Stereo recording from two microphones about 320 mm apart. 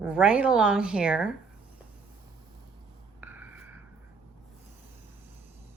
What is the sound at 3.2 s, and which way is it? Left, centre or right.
Writing, centre.